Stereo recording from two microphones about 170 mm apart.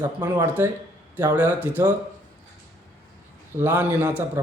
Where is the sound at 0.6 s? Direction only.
15° right (ahead or behind).